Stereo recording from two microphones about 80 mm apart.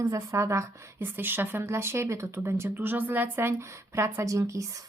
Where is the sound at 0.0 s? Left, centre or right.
Right.